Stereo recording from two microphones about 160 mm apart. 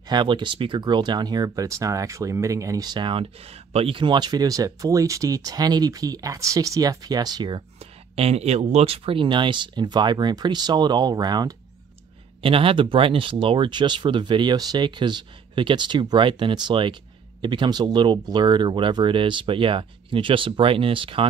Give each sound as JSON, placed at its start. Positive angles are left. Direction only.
{"t": 0.1, "sound": "speech", "side_deg": -30}
{"t": 7.8, "sound": "speech", "side_deg": -40}
{"t": 12.4, "sound": "speech", "side_deg": -35}